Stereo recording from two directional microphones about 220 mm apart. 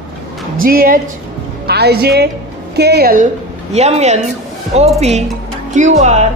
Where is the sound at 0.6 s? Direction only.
40° right (ahead or behind).